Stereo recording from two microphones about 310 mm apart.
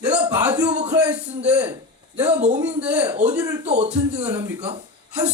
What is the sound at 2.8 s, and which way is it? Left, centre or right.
Speech, centre.